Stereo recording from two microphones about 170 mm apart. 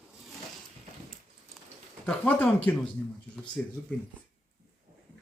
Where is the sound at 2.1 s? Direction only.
10° left (ahead or behind).